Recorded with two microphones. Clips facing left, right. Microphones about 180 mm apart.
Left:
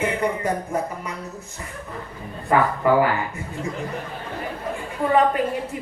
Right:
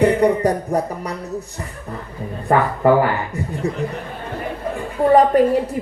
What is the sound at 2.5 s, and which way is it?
Speech, 40° right (ahead or behind).